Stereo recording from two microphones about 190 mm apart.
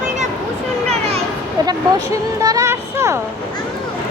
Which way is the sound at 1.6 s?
20° right (ahead or behind).